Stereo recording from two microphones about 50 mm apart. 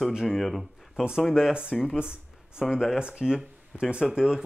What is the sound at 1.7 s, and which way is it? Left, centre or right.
Speech, centre.